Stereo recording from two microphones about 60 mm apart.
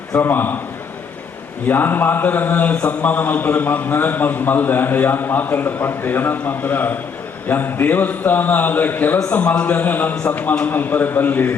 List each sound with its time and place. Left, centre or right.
0.1 s a man's voice: left
1.6 s a man's voice: left